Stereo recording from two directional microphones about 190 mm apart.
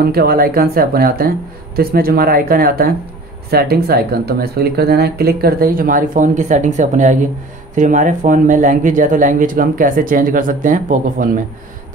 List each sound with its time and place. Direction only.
0.0 s speech: 55° right (ahead or behind)